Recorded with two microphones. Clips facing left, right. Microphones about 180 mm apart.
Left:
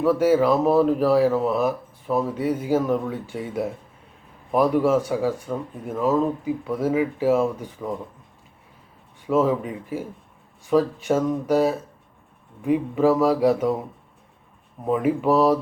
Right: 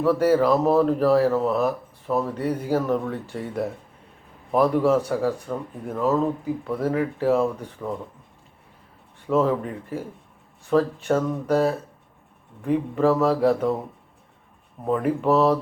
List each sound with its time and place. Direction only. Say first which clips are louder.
0.0 s speech: left 1 dB; centre (ahead or behind)
9.2 s speech: left 1 dB; 5° left (ahead or behind)
14.8 s speech: left 1 dB; 5° left (ahead or behind)